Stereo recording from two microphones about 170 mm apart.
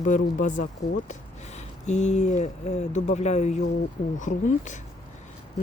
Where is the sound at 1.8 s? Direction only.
45° left (ahead or behind).